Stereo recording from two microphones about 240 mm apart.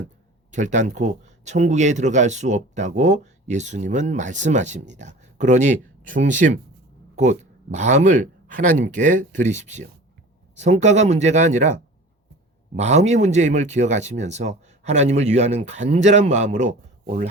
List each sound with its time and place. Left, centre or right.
0.5 s speech: right